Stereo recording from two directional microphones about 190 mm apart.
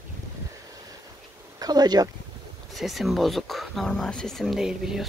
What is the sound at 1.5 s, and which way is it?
Speech, 20° right (ahead or behind).